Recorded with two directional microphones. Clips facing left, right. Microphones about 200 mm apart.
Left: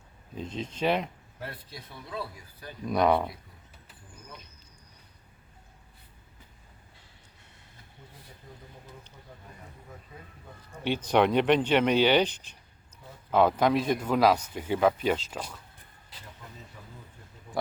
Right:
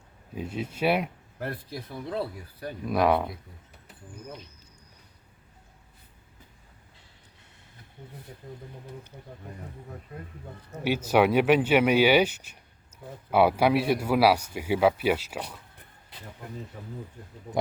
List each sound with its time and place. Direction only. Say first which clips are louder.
0.3 s speech: right 2 dB; 10° right (ahead or behind)
1.4 s speech: right 7 dB; 55° right (ahead or behind)
2.8 s speech: right 1 dB; 5° right (ahead or behind)
10.8 s speech: right 2 dB; 10° right (ahead or behind)
16.8 s speech: right 9 dB; 45° right (ahead or behind)